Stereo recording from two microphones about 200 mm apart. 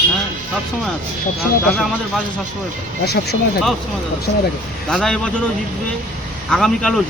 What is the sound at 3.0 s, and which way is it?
Speech, 55° left (ahead or behind).